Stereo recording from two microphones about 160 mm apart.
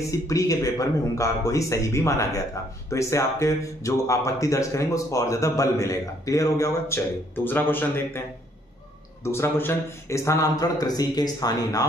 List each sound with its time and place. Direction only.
0.1 s a man's voice: 20° left (ahead or behind)
9.2 s a man's voice: 15° left (ahead or behind)